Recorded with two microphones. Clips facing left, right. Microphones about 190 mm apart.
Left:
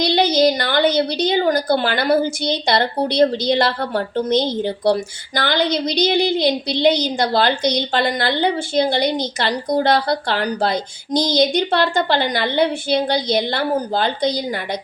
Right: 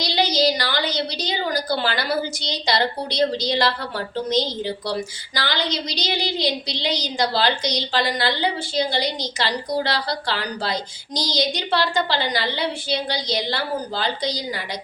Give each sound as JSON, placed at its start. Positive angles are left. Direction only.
{"t": 0.0, "sound": "a woman's voice", "side_deg": 55}